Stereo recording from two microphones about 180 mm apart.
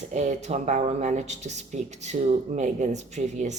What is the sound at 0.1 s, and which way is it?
A woman's voice, 40° right (ahead or behind).